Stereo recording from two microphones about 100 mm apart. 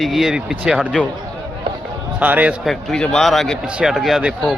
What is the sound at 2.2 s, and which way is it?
Speech, 15° right (ahead or behind).